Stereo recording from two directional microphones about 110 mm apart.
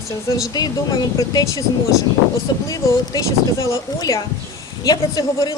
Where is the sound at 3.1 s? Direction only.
30° left (ahead or behind).